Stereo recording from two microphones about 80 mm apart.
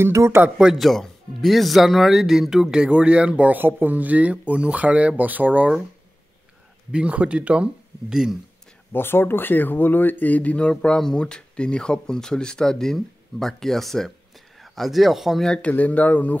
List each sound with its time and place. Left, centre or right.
0.0 s speech: right
0.6 s speech: centre; by 5.7 s right
6.9 s speech: centre
8.9 s speech: left; by 15.4 s centre
15.4 s speech: centre